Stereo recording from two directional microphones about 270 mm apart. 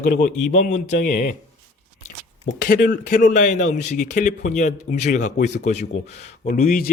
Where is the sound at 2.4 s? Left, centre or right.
Left.